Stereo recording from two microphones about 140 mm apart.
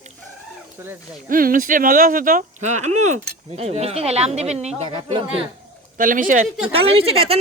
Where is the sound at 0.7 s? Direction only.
15° right (ahead or behind).